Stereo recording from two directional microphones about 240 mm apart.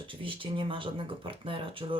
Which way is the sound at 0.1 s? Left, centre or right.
Right.